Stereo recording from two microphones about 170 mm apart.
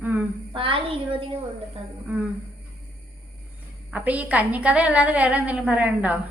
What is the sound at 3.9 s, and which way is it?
A woman's voice, 10° right (ahead or behind).